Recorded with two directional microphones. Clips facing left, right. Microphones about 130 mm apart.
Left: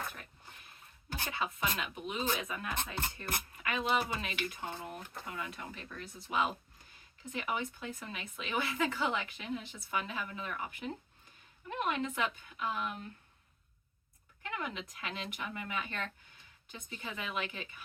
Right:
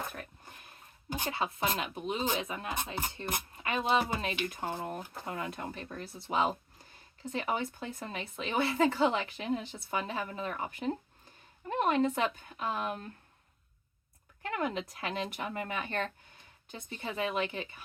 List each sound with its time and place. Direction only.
1.3 s speech: 30° right (ahead or behind)
4.5 s speech: 40° right (ahead or behind)
14.5 s speech: 40° right (ahead or behind)